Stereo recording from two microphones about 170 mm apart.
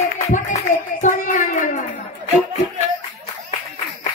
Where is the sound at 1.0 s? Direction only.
50° left (ahead or behind).